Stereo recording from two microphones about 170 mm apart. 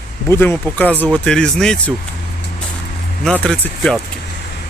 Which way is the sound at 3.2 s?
5° left (ahead or behind).